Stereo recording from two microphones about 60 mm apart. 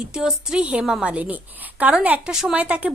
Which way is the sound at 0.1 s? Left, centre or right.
Centre.